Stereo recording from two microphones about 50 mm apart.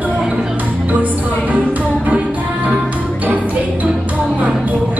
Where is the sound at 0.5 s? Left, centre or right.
Right.